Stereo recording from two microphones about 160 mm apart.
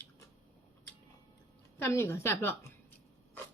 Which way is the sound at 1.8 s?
15° left (ahead or behind).